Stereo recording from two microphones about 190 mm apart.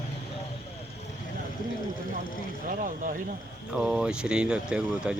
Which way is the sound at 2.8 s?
45° right (ahead or behind).